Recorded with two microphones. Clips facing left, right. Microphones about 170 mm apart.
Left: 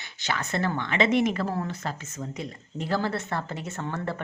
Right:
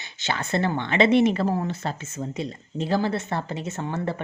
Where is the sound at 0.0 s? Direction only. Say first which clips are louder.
Right 2 dB; 25° right (ahead or behind).